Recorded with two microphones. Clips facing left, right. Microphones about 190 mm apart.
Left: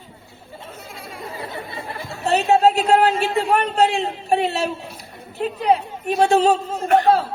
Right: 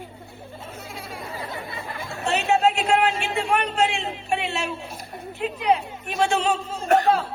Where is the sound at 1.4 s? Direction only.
35° left (ahead or behind).